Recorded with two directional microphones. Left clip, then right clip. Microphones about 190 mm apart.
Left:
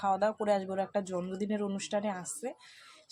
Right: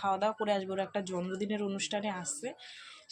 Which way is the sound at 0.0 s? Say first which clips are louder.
Left 1 dB; 20° left (ahead or behind).